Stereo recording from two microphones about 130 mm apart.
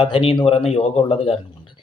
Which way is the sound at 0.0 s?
45° left (ahead or behind).